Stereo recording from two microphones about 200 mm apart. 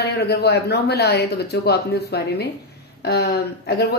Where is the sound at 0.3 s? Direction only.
55° left (ahead or behind).